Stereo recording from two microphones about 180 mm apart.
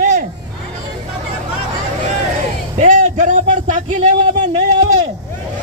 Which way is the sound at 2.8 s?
45° right (ahead or behind).